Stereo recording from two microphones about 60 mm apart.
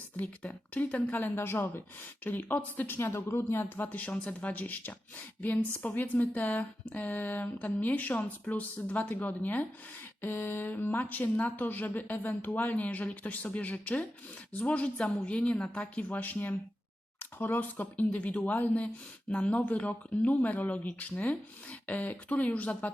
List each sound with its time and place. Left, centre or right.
0.2 s speech: left
2.2 s speech: left
3.8 s speech: left